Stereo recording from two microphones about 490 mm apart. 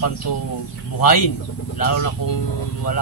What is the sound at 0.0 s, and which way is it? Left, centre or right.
Speech, left.